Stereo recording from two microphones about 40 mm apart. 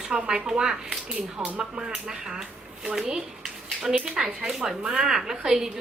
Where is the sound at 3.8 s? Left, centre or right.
Centre.